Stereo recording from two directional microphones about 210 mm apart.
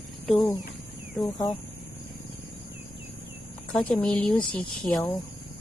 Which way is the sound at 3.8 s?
5° left (ahead or behind).